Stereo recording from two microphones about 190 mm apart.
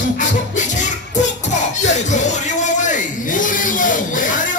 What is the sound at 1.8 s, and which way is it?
Music, 40° left (ahead or behind).